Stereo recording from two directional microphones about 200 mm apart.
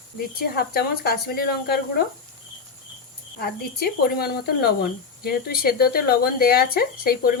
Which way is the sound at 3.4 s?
50° left (ahead or behind).